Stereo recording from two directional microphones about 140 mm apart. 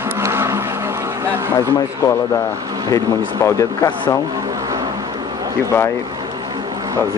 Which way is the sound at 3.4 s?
25° left (ahead or behind).